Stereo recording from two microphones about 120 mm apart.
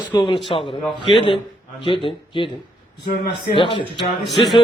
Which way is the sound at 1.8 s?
45° left (ahead or behind).